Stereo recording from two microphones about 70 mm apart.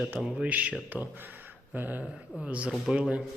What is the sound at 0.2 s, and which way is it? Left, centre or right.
Speech, centre.